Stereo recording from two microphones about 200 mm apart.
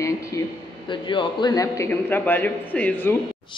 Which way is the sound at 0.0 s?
15° left (ahead or behind).